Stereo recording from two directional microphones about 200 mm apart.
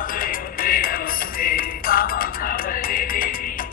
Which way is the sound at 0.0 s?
45° left (ahead or behind).